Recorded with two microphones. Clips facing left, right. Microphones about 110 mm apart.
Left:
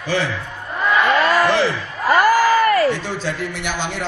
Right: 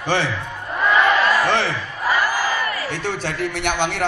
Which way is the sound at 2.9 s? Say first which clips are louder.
Left 2 dB; 60° right (ahead or behind).